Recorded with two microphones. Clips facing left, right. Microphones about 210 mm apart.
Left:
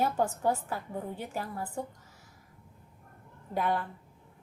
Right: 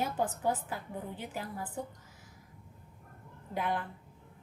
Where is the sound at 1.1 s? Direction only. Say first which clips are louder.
Left 3 dB; 45° left (ahead or behind).